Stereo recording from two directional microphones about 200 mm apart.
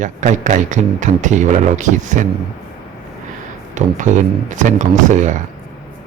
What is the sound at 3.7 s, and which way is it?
Speech, 40° right (ahead or behind).